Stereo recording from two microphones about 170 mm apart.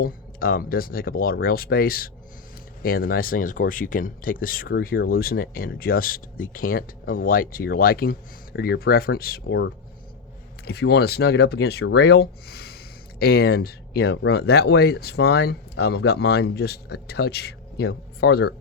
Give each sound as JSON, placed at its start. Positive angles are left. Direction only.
{"t": 0.0, "sound": "speech", "side_deg": 60}